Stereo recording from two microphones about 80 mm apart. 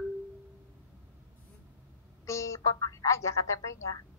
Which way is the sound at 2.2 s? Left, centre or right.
Left.